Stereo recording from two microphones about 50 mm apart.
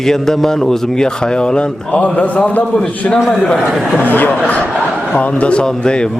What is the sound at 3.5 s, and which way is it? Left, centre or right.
Speech, centre.